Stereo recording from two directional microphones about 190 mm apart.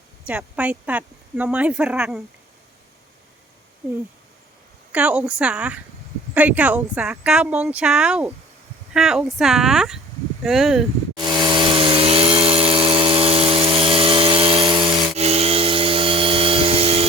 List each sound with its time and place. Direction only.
0.3 s speech: 5° right (ahead or behind)
4.9 s speech: 5° right (ahead or behind)
11.2 s power tool: 25° right (ahead or behind)